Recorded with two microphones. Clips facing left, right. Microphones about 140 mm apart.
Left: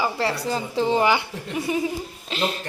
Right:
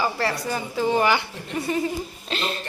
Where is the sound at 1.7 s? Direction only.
10° left (ahead or behind).